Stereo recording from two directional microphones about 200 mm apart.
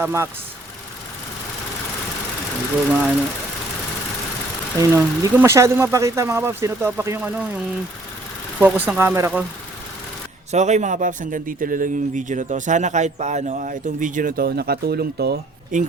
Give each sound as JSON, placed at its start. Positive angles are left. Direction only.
{"t": 0.0, "sound": "speech", "side_deg": -10}
{"t": 2.9, "sound": "speech", "side_deg": -5}
{"t": 4.8, "sound": "speech", "side_deg": -15}
{"t": 10.5, "sound": "speech", "side_deg": -35}